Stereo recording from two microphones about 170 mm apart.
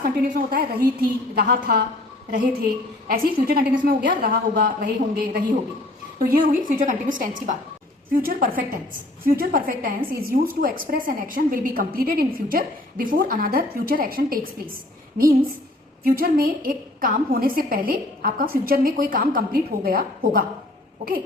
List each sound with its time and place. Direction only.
0.0 s a woman's voice: 55° right (ahead or behind)